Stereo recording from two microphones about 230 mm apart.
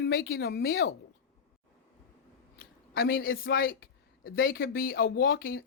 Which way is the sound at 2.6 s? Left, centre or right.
Left.